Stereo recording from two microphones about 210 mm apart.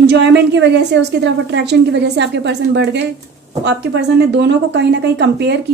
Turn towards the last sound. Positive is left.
turn(degrees=-55)  # may be behind; listen again after turning